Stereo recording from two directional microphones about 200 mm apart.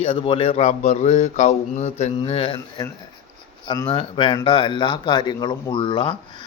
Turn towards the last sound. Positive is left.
turn(degrees=25)  # may be behind; listen again after turning